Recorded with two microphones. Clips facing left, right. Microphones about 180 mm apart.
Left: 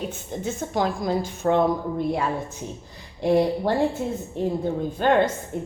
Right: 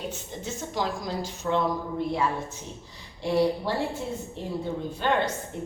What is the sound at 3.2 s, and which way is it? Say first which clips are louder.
Speech: left 4 dB; 50° left (ahead or behind).